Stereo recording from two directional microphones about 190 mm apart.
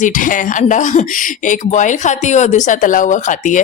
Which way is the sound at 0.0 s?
45° left (ahead or behind).